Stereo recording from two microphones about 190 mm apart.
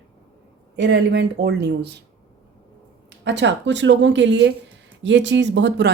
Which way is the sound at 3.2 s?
70° right (ahead or behind).